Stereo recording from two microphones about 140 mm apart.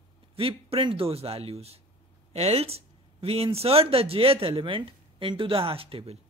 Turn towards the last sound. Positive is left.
turn(degrees=-40)  # may be behind; listen again after turning